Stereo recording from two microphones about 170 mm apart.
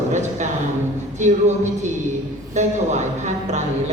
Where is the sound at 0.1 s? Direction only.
45° right (ahead or behind).